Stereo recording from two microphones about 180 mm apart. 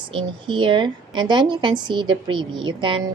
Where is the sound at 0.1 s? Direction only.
25° right (ahead or behind).